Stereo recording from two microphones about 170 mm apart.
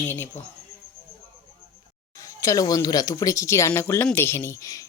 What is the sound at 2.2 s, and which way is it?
Speech, 20° left (ahead or behind).